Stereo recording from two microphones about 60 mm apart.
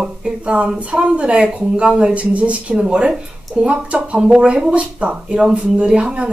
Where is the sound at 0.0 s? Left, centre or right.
Centre.